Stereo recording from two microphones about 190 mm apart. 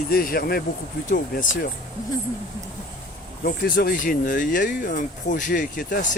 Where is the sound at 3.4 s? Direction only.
50° left (ahead or behind).